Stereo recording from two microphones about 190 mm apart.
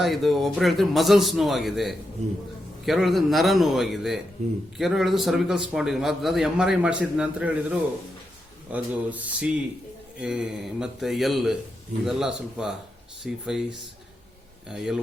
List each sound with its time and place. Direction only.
0.0 s a man's voice: centre (ahead or behind)
2.2 s speech: 35° right (ahead or behind)
2.8 s a man's voice: centre (ahead or behind)